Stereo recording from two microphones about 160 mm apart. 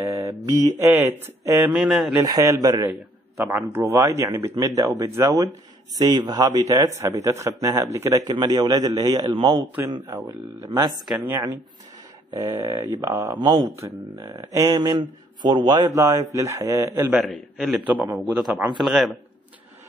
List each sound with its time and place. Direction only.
0.0 s speech: 20° right (ahead or behind)
1.7 s a man's voice: centre (ahead or behind)
2.2 s speech: 20° right (ahead or behind)
3.9 s speech: 20° right (ahead or behind)
9.9 s speech: 15° right (ahead or behind)
11.2 s speech: 10° right (ahead or behind)
15.4 s speech: 25° right (ahead or behind)
17.1 s a man's voice: centre (ahead or behind)